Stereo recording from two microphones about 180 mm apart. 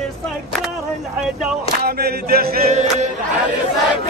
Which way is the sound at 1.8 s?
60° right (ahead or behind).